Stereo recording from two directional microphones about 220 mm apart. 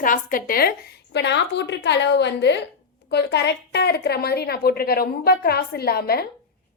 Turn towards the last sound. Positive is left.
turn(degrees=45)  # may be behind; listen again after turning